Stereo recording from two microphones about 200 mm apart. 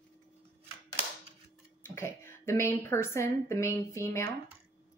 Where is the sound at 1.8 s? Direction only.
10° left (ahead or behind).